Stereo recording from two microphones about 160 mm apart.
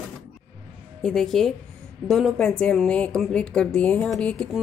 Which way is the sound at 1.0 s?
5° left (ahead or behind).